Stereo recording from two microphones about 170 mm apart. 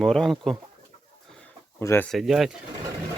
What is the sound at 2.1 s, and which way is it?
Speech, centre (ahead or behind).